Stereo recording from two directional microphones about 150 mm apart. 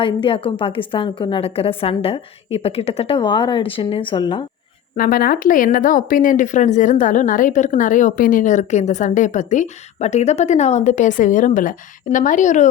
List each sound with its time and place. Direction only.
0.0 s a woman's voice: 35° left (ahead or behind)
4.9 s a woman's voice: 70° left (ahead or behind); by 12.6 s 55° left (ahead or behind)